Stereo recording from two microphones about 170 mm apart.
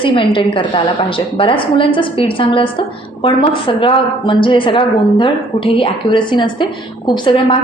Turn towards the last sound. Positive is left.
turn(degrees=30)  # may be behind; listen again after turning